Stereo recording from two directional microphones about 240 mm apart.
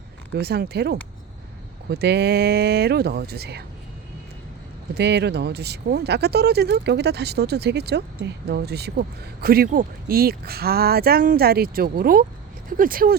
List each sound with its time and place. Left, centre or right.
0.3 s speech: right
4.9 s speech: right